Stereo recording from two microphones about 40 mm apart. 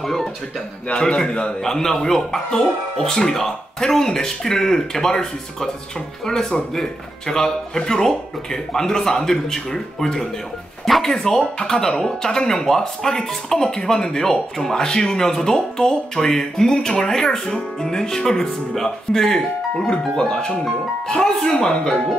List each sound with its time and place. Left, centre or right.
0.0 s music: centre
0.9 s speech: centre
1.6 s speech: centre
6.7 s speech: centre